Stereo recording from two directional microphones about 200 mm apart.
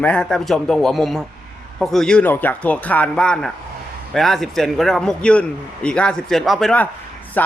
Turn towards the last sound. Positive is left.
turn(degrees=10)  # may be behind; listen again after turning